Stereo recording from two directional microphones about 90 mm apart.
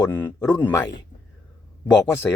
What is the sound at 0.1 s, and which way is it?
Speech, 25° left (ahead or behind).